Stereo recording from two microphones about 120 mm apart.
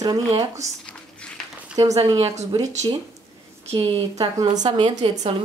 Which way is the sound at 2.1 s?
65° right (ahead or behind).